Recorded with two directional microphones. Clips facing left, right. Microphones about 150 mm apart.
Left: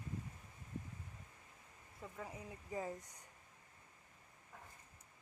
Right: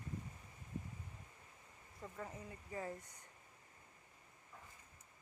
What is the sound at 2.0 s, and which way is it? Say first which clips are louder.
Speech: even; 5° left (ahead or behind).